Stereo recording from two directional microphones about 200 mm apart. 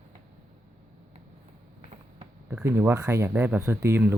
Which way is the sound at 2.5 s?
10° right (ahead or behind).